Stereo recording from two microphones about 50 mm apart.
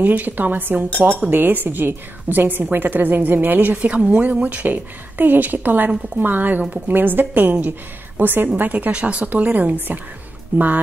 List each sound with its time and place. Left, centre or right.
0.0 s a woman's voice: right
4.7 s a woman's voice: right
8.5 s a woman's voice: right